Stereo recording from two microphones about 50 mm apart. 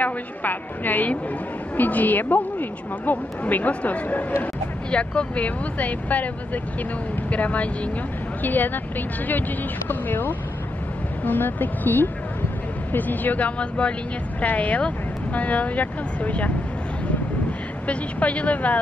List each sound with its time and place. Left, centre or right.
0.0 s speech: left
8.4 s speech: left